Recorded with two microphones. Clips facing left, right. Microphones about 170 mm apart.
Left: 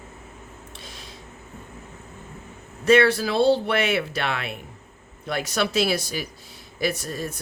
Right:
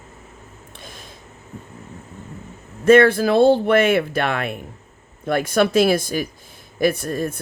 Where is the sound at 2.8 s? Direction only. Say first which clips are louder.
Right 5 dB; 50° right (ahead or behind).